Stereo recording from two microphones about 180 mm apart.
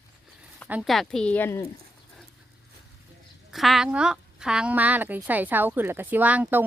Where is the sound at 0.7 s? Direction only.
Centre (ahead or behind).